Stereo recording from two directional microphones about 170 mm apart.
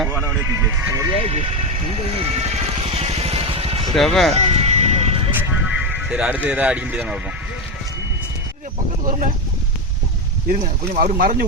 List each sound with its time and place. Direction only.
0.1 s speech: 15° right (ahead or behind)
1.3 s speech: 40° right (ahead or behind)
2.1 s vehicle: 35° right (ahead or behind)
3.9 s speech: centre (ahead or behind)
4.4 s music: 40° right (ahead or behind)
5.3 s music: 10° right (ahead or behind)
9.0 s speech: 45° right (ahead or behind)
10.5 s speech: 50° right (ahead or behind)